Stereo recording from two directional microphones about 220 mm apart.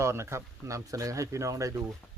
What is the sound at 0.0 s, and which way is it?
Speech, 10° right (ahead or behind).